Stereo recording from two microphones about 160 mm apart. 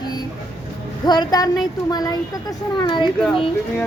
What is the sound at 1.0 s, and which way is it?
A woman's voice, 25° left (ahead or behind).